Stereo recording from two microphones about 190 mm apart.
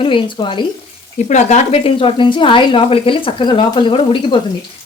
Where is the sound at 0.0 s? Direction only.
25° left (ahead or behind).